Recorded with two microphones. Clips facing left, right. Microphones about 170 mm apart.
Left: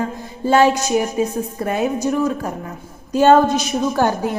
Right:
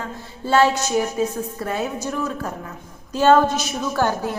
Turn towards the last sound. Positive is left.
turn(degrees=15)  # may be behind; listen again after turning